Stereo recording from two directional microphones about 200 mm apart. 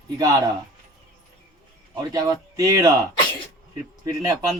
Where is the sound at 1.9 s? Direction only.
15° right (ahead or behind).